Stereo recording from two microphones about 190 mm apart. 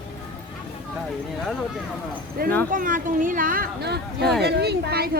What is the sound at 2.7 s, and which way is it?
Speech, 45° right (ahead or behind).